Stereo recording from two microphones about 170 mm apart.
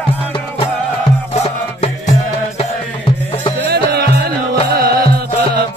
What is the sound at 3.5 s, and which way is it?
Music, 75° right (ahead or behind).